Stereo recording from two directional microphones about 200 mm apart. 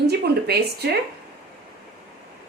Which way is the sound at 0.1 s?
55° right (ahead or behind).